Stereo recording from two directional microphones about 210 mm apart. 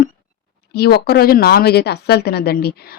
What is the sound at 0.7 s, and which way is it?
Speech, 50° left (ahead or behind).